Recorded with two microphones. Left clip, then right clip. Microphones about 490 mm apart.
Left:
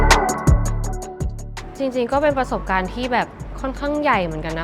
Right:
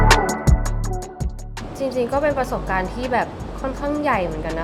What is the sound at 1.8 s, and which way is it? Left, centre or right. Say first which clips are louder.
A woman's voice: left 1 dB; left.